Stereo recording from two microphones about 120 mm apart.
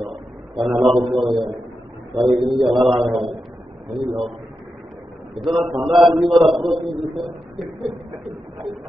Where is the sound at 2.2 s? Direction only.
45° right (ahead or behind).